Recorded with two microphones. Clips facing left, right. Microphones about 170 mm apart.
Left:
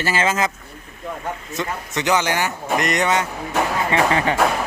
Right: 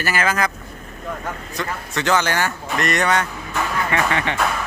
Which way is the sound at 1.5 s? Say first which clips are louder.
Even; 20° left (ahead or behind).